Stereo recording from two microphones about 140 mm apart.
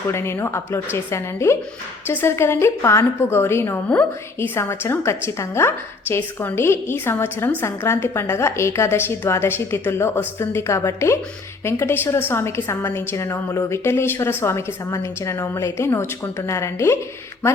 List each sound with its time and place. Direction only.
0.1 s a woman's voice: 20° left (ahead or behind)